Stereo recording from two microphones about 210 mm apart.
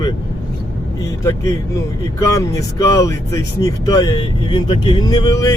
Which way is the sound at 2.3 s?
15° left (ahead or behind).